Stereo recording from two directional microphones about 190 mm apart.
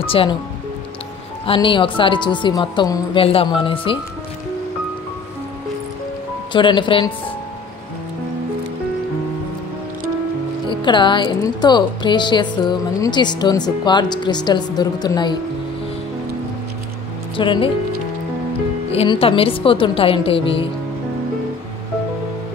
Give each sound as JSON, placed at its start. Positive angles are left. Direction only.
{"t": 0.0, "sound": "speech", "side_deg": 30}
{"t": 1.4, "sound": "speech", "side_deg": 25}
{"t": 6.5, "sound": "speech", "side_deg": 25}
{"t": 10.7, "sound": "speech", "side_deg": 25}
{"t": 17.4, "sound": "speech", "side_deg": 25}
{"t": 18.9, "sound": "speech", "side_deg": 30}